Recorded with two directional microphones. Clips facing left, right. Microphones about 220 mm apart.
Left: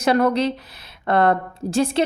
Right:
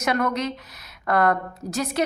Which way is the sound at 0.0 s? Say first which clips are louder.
Left 6 dB; 30° left (ahead or behind).